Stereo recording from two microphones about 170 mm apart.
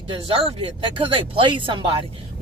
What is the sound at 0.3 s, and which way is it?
Speech, 35° right (ahead or behind).